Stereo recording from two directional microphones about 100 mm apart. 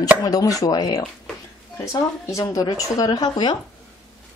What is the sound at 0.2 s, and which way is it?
Speech, 35° left (ahead or behind).